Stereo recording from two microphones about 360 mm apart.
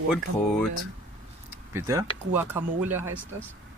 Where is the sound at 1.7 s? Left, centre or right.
Centre.